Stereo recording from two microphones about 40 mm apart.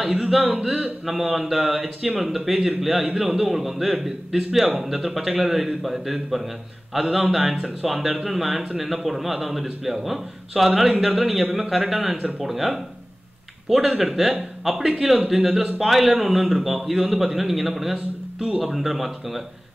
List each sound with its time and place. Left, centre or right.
0.0 s a man's voice: centre
14.9 s a man's voice: centre